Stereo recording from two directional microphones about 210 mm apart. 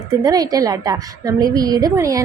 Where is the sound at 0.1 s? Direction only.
15° right (ahead or behind).